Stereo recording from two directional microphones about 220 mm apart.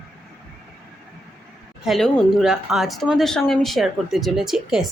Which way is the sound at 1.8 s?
Centre (ahead or behind).